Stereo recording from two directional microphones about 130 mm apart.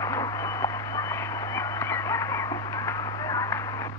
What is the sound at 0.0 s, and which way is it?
Radio, 25° left (ahead or behind).